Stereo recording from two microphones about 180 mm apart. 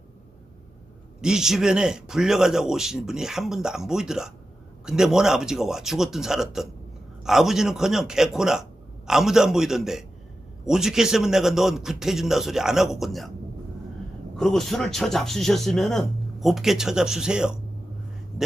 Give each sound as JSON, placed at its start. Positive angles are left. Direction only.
{"t": 1.2, "sound": "speech", "side_deg": -5}
{"t": 14.3, "sound": "speech", "side_deg": 0}